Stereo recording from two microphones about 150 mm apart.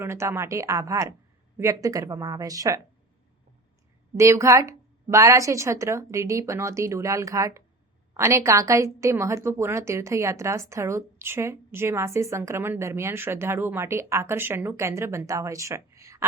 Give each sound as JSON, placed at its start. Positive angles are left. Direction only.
{"t": 0.0, "sound": "a woman's voice", "side_deg": -15}
{"t": 4.2, "sound": "a woman's voice", "side_deg": -20}